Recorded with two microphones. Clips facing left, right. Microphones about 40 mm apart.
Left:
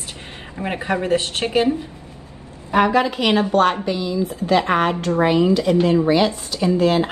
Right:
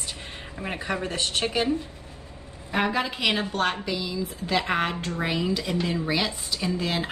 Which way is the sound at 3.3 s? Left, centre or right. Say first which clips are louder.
Left 10 dB; left.